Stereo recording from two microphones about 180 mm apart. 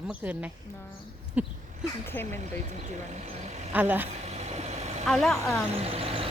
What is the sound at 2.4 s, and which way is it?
Speech, 40° right (ahead or behind).